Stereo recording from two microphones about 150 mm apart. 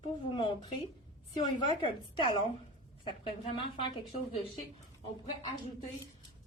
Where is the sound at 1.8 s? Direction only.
35° left (ahead or behind).